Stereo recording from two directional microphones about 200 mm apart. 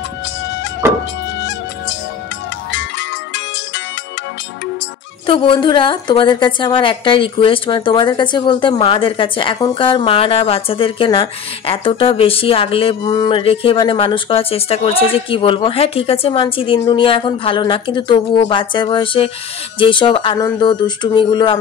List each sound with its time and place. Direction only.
0.8 s music: 10° right (ahead or behind)
2.7 s music: 65° left (ahead or behind)
5.2 s a woman's voice: 25° left (ahead or behind)